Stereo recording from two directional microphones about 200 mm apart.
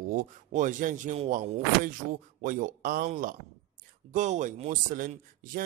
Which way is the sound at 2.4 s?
40° right (ahead or behind).